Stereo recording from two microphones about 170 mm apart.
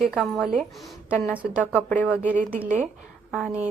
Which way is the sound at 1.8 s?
10° left (ahead or behind).